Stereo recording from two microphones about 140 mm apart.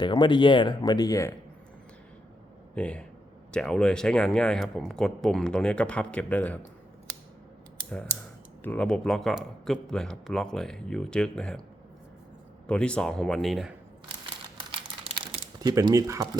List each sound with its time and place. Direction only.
0.0 s speech: 35° left (ahead or behind)
2.7 s speech: 10° left (ahead or behind)
7.9 s speech: 10° left (ahead or behind)
12.6 s speech: 5° left (ahead or behind)
15.2 s a sound: 35° right (ahead or behind)
15.7 s speech: 25° right (ahead or behind)